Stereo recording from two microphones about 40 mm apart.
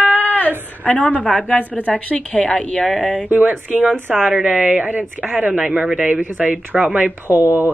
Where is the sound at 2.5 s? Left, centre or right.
Left.